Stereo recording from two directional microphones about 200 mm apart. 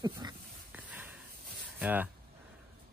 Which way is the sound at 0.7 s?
10° right (ahead or behind).